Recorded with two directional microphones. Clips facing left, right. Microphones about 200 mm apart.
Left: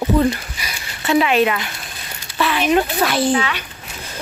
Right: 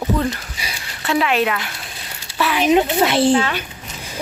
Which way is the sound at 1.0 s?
Centre (ahead or behind).